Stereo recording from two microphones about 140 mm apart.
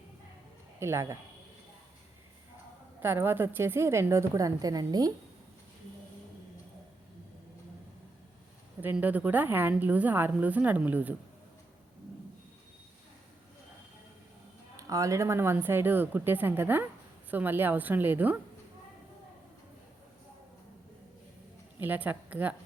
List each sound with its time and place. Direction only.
0.8 s a woman's voice: 20° right (ahead or behind)
3.0 s a woman's voice: 15° right (ahead or behind)
8.8 s a woman's voice: 15° right (ahead or behind)
14.8 s a woman's voice: 25° right (ahead or behind)
21.8 s speech: 10° right (ahead or behind)